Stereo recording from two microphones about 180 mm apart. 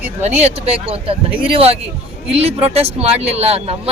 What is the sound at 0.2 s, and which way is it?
Speech, 40° right (ahead or behind).